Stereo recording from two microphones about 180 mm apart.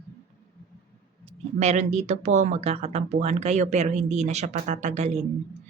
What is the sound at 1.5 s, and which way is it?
A woman's voice, 40° right (ahead or behind).